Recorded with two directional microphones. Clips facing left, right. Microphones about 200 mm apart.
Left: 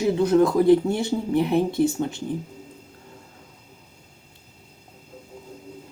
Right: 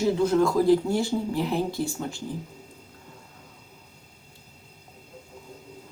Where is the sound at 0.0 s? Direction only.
20° left (ahead or behind).